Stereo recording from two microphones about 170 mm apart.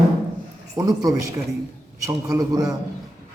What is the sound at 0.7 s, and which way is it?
A woman's voice, 20° right (ahead or behind).